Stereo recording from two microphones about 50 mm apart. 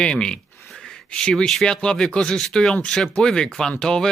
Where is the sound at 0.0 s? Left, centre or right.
Centre.